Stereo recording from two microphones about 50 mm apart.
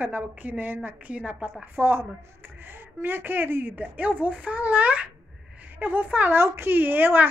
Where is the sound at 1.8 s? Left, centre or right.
Right.